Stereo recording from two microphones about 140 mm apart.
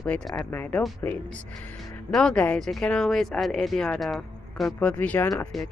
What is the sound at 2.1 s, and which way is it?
Speech, 5° left (ahead or behind).